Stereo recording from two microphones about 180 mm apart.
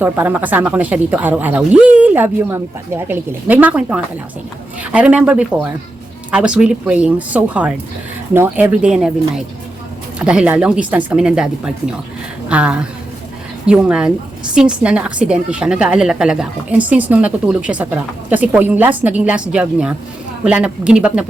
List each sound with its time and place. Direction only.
0.0 s a woman's voice: 10° right (ahead or behind)